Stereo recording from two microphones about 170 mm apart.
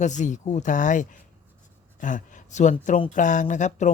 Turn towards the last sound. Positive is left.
turn(degrees=45)  # may be behind; listen again after turning